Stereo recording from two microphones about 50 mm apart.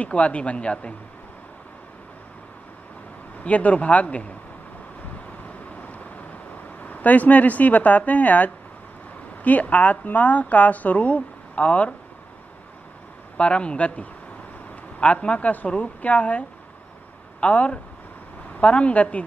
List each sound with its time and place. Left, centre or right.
0.0 s a woman's voice: left
3.4 s a woman's voice: left
6.8 s a woman's voice: left
13.4 s a woman's voice: left